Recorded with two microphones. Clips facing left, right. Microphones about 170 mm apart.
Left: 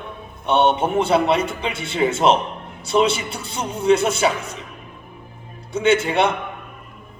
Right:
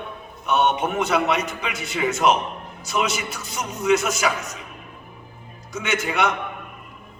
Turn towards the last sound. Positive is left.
turn(degrees=30)  # may be behind; listen again after turning